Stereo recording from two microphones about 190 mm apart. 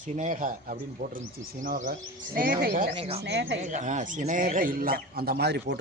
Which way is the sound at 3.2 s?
65° right (ahead or behind).